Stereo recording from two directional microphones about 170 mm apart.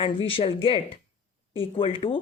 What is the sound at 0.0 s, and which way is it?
Speech, 30° left (ahead or behind).